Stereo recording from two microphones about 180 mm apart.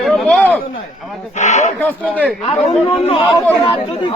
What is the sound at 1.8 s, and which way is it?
Speech, 10° left (ahead or behind).